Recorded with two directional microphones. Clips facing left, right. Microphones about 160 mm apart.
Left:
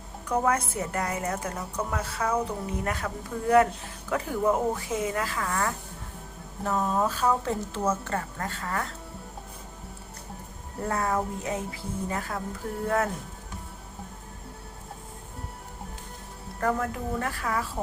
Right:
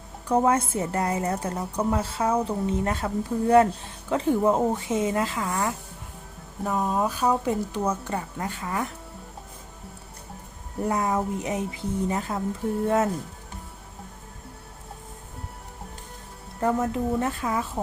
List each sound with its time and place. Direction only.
0.3 s a woman's voice: 30° right (ahead or behind)
10.8 s a woman's voice: 15° right (ahead or behind)
16.6 s a woman's voice: 20° right (ahead or behind)